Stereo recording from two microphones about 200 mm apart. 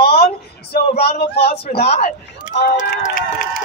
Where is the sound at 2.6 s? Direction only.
55° left (ahead or behind).